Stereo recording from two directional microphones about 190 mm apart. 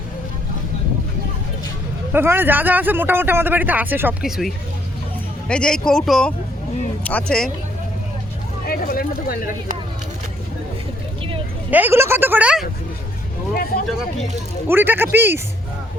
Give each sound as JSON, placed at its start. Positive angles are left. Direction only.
{"t": 2.1, "sound": "speech", "side_deg": -10}
{"t": 8.6, "sound": "speech", "side_deg": 50}
{"t": 11.7, "sound": "speech", "side_deg": -10}
{"t": 14.7, "sound": "speech", "side_deg": -10}